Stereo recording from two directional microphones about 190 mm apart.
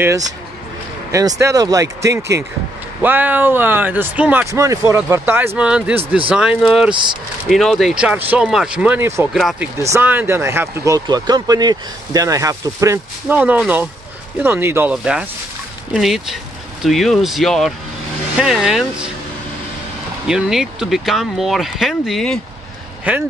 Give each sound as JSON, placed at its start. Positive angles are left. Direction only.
{"t": 1.1, "sound": "speech", "side_deg": -15}
{"t": 9.3, "sound": "speech", "side_deg": 0}
{"t": 9.8, "sound": "speech", "side_deg": -15}
{"t": 20.2, "sound": "speech", "side_deg": -5}